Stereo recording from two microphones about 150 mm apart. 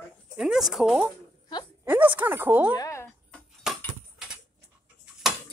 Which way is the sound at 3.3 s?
Centre (ahead or behind).